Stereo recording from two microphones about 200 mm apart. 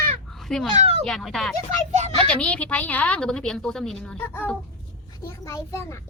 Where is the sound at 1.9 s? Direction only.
35° right (ahead or behind).